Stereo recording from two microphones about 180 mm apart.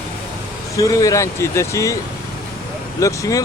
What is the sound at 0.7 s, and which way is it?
Speech, 20° left (ahead or behind).